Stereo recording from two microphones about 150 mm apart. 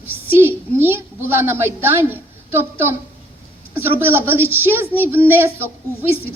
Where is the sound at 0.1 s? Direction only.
15° right (ahead or behind).